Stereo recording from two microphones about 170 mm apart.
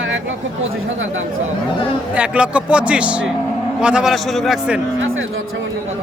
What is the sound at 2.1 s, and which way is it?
Speech, 5° right (ahead or behind).